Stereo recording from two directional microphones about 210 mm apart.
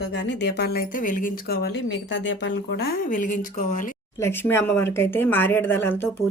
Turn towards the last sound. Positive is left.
turn(degrees=10)  # may be behind; listen again after turning